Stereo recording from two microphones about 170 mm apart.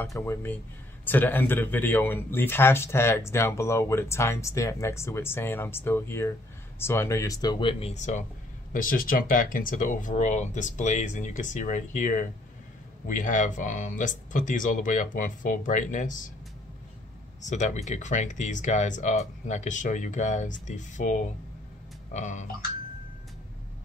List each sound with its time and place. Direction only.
0.0 s speech: 15° left (ahead or behind)
7.8 s speech: 45° left (ahead or behind)
17.5 s speech: 45° left (ahead or behind)